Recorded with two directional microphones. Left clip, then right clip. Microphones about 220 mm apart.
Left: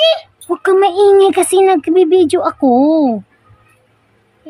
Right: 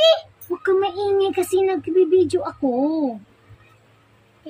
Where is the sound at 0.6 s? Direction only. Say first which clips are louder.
Left 10 dB; 55° left (ahead or behind).